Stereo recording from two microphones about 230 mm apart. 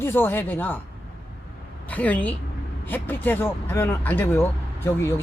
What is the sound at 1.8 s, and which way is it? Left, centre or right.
Speech, centre.